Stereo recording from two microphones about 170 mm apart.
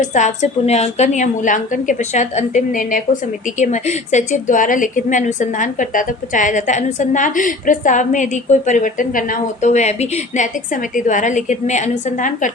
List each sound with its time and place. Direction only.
0.0 s a woman's voice: 45° left (ahead or behind)